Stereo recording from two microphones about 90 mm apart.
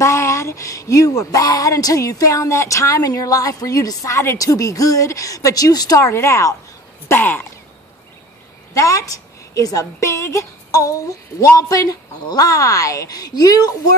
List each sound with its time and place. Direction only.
0.0 s speech: 30° left (ahead or behind)
7.1 s a sound: 20° left (ahead or behind)
8.7 s a woman's voice: 35° left (ahead or behind)